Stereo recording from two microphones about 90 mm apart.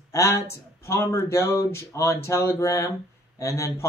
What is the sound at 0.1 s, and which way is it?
Speech, 30° left (ahead or behind).